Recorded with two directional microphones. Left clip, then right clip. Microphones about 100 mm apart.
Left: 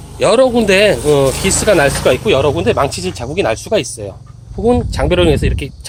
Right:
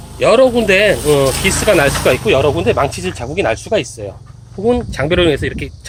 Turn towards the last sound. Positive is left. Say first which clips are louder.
# left 1 dB
turn(degrees=30)  # may be behind; listen again after turning